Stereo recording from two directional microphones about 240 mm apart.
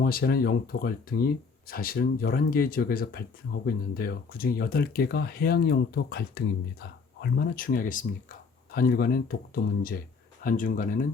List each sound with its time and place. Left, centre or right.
0.0 s speech: left
10.4 s speech: left